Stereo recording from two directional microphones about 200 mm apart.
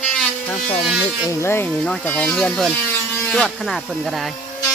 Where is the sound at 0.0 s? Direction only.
5° left (ahead or behind).